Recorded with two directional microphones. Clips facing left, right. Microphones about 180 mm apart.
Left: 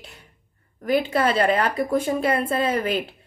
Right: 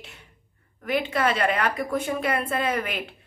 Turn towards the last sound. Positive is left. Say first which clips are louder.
# left 4 dB
turn(degrees=30)  # may be behind; listen again after turning